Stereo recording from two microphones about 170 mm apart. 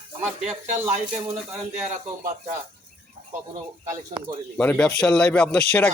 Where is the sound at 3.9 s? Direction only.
30° right (ahead or behind).